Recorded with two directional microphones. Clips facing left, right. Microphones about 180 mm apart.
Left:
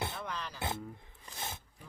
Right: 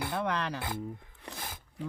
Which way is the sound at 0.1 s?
65° right (ahead or behind).